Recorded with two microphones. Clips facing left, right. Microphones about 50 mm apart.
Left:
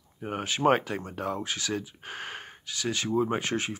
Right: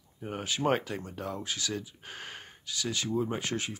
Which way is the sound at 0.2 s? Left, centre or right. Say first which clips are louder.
Left 5 dB; left.